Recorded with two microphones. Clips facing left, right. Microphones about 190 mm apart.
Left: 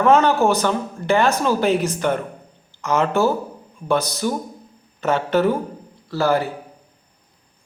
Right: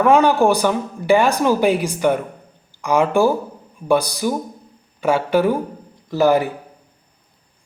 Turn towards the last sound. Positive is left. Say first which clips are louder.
# right 4 dB
turn(degrees=-15)  # may be behind; listen again after turning